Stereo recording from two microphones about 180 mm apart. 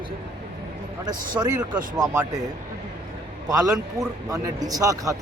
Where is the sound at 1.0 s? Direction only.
25° right (ahead or behind).